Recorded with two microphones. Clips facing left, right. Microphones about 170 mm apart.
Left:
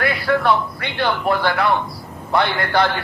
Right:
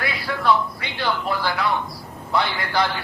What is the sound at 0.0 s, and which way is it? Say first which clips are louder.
A man's voice: left 6 dB; 60° left (ahead or behind).